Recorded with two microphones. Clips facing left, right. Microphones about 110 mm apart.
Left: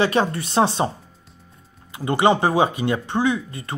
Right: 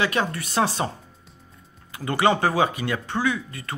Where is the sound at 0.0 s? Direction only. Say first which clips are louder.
Left 5 dB; 30° left (ahead or behind).